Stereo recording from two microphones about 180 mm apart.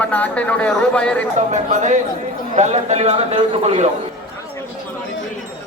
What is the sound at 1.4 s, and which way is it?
A man's voice, 40° right (ahead or behind).